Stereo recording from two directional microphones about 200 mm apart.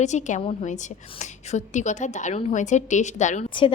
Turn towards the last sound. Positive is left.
turn(degrees=25)  # may be behind; listen again after turning